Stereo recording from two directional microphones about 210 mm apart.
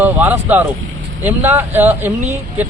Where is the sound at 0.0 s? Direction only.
10° right (ahead or behind).